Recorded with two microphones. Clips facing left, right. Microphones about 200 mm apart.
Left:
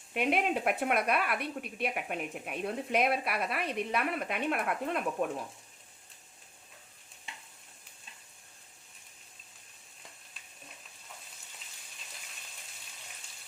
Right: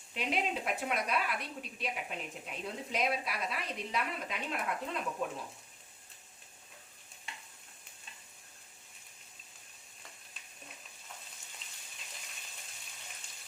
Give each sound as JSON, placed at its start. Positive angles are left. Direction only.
{"t": 0.1, "sound": "a woman's voice", "side_deg": 60}